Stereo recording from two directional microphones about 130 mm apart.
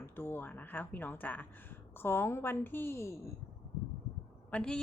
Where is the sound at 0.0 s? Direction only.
15° left (ahead or behind).